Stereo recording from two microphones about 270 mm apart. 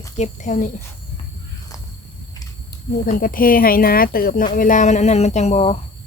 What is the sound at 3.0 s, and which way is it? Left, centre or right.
Speech, left.